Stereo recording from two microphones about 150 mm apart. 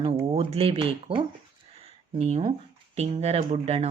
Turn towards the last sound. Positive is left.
turn(degrees=-45)  # may be behind; listen again after turning